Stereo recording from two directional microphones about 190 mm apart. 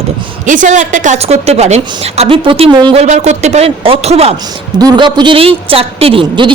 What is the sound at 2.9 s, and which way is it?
A woman's voice, 35° right (ahead or behind).